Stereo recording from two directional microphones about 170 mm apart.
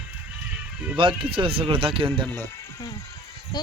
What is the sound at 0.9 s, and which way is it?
Speech, 30° right (ahead or behind).